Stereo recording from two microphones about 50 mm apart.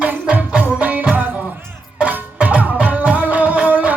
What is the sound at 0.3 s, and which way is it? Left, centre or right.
Music, right.